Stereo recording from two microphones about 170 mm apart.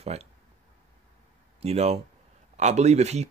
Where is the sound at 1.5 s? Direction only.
40° right (ahead or behind).